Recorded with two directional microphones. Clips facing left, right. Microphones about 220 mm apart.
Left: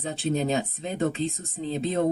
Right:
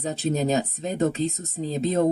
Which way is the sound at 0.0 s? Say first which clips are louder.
Right 2 dB; 40° right (ahead or behind).